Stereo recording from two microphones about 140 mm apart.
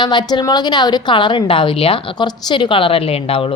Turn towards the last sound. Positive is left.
turn(degrees=40)  # may be behind; listen again after turning